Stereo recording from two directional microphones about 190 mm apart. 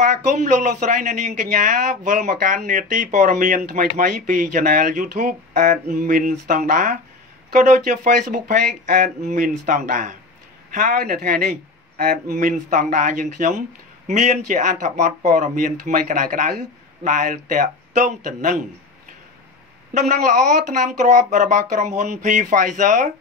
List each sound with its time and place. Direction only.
0.0 s speech: 40° right (ahead or behind)
19.9 s speech: 40° right (ahead or behind)